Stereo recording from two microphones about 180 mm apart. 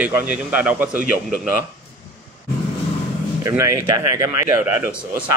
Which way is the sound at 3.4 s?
15° right (ahead or behind).